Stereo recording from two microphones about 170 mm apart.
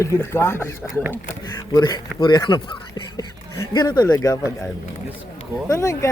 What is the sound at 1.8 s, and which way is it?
A man's voice, 25° left (ahead or behind).